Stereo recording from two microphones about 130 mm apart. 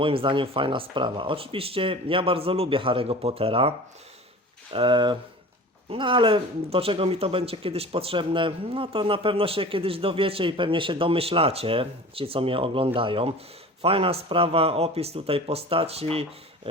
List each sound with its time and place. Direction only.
0.0 s speech: 45° right (ahead or behind)